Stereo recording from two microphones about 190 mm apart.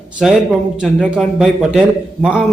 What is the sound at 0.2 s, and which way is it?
A man's voice, 5° right (ahead or behind).